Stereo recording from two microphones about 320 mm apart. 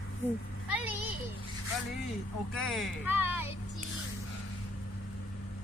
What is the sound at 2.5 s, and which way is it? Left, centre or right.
Speech, centre.